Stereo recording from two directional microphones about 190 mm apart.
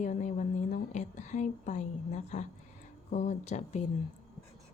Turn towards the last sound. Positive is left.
turn(degrees=35)  # may be behind; listen again after turning